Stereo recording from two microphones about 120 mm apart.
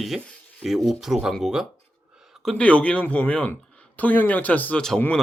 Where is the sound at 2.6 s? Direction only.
10° left (ahead or behind).